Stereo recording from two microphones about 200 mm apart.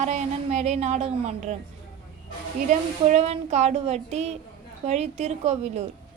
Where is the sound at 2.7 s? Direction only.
35° right (ahead or behind).